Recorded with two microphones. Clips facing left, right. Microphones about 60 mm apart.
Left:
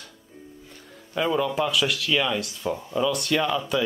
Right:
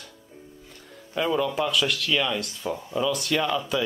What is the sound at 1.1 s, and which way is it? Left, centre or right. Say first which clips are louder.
Speech: left 1 dB; centre.